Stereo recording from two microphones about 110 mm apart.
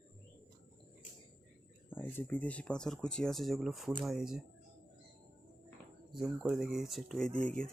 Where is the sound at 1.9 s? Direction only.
20° left (ahead or behind); by 4.4 s 5° right (ahead or behind).